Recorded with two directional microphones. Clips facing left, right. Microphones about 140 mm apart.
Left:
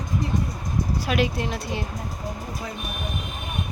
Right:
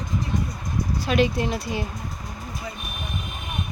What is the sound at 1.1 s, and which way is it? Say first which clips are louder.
Speech: right 4 dB; 5° left (ahead or behind).